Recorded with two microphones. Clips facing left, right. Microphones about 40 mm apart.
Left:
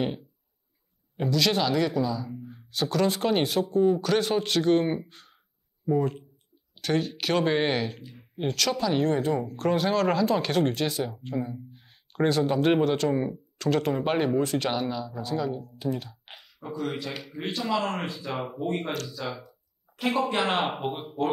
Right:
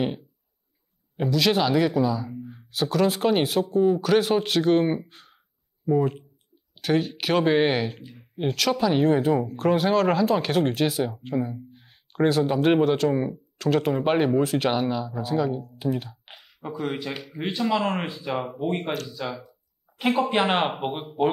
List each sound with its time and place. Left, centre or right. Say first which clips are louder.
1.1 s speech: right 3 dB; centre
20.2 s speech: right 4 dB; centre
20.5 s speech: right 3 dB; centre
20.8 s speech: right 2 dB; centre